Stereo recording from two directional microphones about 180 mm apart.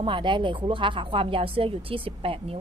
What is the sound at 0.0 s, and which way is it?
A woman's voice, 25° right (ahead or behind).